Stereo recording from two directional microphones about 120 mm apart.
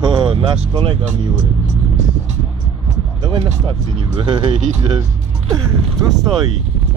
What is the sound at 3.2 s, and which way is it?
Speech, 40° right (ahead or behind).